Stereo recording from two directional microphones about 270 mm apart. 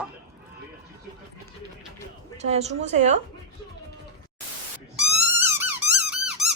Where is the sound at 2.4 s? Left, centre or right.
Right.